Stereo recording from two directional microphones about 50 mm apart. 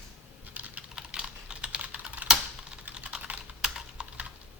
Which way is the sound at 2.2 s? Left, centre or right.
Centre.